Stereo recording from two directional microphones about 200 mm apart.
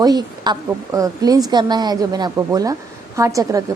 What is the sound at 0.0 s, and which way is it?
A woman's voice, 20° right (ahead or behind).